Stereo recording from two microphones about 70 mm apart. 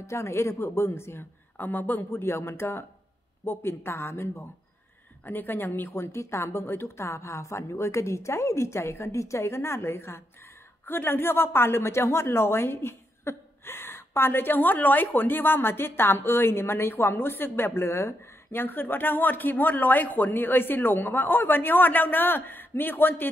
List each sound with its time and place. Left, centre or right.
0.0 s a woman's voice: left
5.2 s a woman's voice: left